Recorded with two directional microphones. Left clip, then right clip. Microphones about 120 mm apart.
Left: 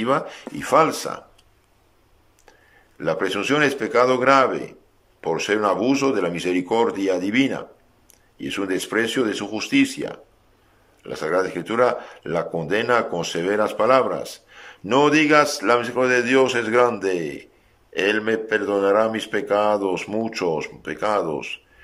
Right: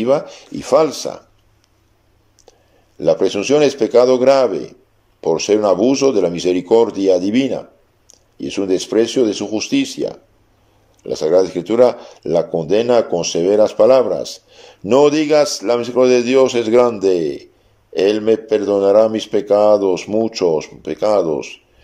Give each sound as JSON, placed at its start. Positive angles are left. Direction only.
{"t": 0.0, "sound": "speech", "side_deg": -30}
{"t": 3.0, "sound": "speech", "side_deg": -30}